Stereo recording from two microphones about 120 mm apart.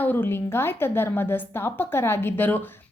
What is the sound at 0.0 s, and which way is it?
A woman's voice, 15° left (ahead or behind).